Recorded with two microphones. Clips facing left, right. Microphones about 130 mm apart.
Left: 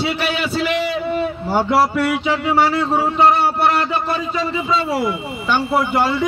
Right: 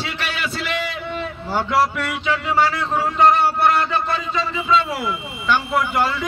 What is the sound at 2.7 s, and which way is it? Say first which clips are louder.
Speech: left 5 dB; 35° left (ahead or behind).